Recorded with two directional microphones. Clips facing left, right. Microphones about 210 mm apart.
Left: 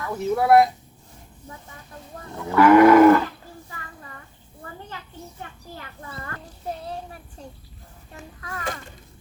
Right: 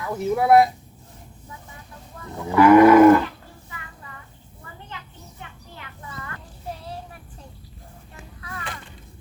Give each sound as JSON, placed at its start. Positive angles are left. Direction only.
{"t": 0.3, "sound": "speech", "side_deg": -5}
{"t": 2.5, "sound": "cattle", "side_deg": -15}
{"t": 5.4, "sound": "a child's voice", "side_deg": 40}
{"t": 8.4, "sound": "a sound", "side_deg": 40}